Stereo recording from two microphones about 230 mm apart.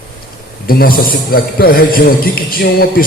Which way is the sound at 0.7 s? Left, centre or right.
Left.